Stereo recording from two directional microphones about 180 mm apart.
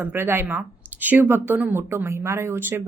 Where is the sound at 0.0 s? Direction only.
10° right (ahead or behind).